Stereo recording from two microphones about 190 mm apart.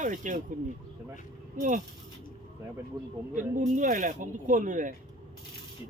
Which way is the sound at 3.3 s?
40° right (ahead or behind).